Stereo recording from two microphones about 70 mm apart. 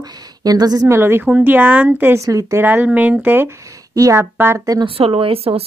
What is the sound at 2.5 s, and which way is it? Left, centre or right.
Speech, right.